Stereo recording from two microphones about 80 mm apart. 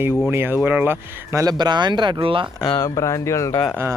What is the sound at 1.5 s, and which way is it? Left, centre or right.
Speech, right.